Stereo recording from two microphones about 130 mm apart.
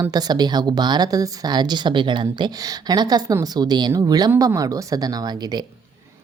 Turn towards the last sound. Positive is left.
turn(degrees=-30)  # may be behind; listen again after turning